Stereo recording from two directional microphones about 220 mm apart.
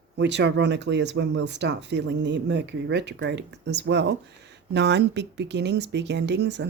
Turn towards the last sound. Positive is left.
turn(degrees=-50)  # may be behind; listen again after turning